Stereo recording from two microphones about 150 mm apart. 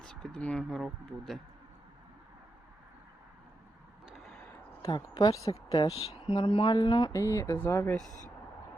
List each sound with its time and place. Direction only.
0.0 s speech: 5° left (ahead or behind)
4.8 s speech: 30° left (ahead or behind)
5.9 s speech: 45° left (ahead or behind); by 7.9 s 15° left (ahead or behind)